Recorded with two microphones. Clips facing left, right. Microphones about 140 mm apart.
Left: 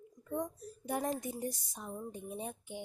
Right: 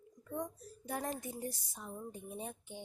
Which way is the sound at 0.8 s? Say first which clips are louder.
Left 4 dB; 15° left (ahead or behind).